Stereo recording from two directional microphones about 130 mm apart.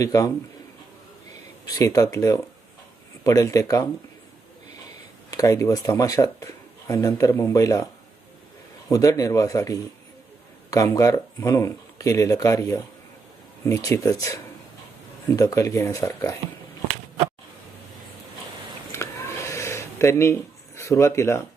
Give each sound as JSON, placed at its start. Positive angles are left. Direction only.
{"t": 0.0, "sound": "speech", "side_deg": 25}
{"t": 1.6, "sound": "speech", "side_deg": 25}
{"t": 5.3, "sound": "speech", "side_deg": 25}
{"t": 8.9, "sound": "speech", "side_deg": 25}
{"t": 15.4, "sound": "speech", "side_deg": 25}
{"t": 18.9, "sound": "a sound", "side_deg": 20}